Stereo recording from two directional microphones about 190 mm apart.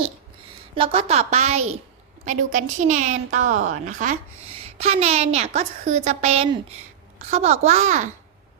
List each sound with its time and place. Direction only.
0.8 s a woman's voice: 30° right (ahead or behind)